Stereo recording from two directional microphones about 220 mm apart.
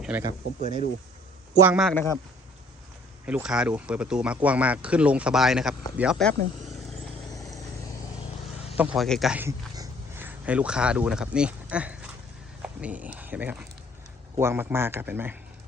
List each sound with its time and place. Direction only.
0.0 s speech: 10° right (ahead or behind)
0.6 s speech: 30° right (ahead or behind)
1.5 s speech: 5° right (ahead or behind)
3.2 s speech: 5° right (ahead or behind)
8.8 s speech: 5° right (ahead or behind)